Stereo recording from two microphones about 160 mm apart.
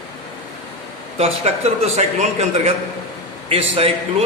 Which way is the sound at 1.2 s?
40° right (ahead or behind).